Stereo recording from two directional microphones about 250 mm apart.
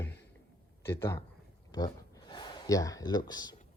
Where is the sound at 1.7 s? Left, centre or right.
Centre.